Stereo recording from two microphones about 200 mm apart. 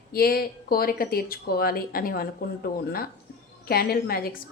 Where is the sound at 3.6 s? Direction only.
50° left (ahead or behind).